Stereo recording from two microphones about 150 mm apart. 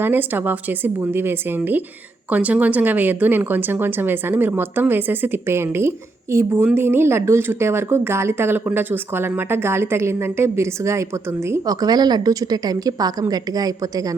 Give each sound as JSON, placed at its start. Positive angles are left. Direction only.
{"t": 0.0, "sound": "speech", "side_deg": -15}